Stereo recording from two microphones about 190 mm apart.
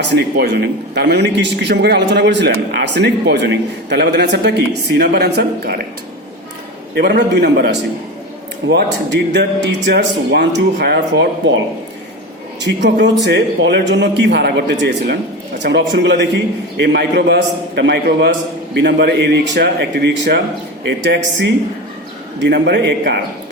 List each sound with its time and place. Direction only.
0.0 s a man's voice: 65° right (ahead or behind)
6.9 s a man's voice: 60° right (ahead or behind)
8.7 s a man's voice: 65° right (ahead or behind)
12.6 s a man's voice: 70° right (ahead or behind)